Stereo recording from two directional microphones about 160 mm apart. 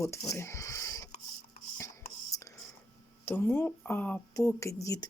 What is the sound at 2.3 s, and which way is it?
Whispering, 20° left (ahead or behind).